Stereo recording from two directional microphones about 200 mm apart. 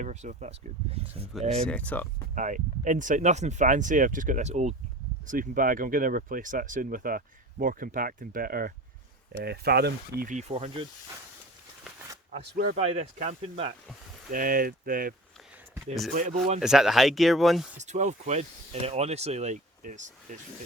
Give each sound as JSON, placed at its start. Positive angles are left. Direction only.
{"t": 0.0, "sound": "speech", "side_deg": -35}
{"t": 1.6, "sound": "speech", "side_deg": 5}
{"t": 2.3, "sound": "speech", "side_deg": -40}
{"t": 10.2, "sound": "speech", "side_deg": -35}
{"t": 12.5, "sound": "speech", "side_deg": -35}
{"t": 14.3, "sound": "speech", "side_deg": -45}
{"t": 16.1, "sound": "speech", "side_deg": -40}
{"t": 16.6, "sound": "speech", "side_deg": -5}
{"t": 17.7, "sound": "speech", "side_deg": -35}